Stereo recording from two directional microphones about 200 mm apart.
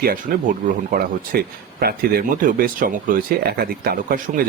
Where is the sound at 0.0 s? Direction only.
45° right (ahead or behind).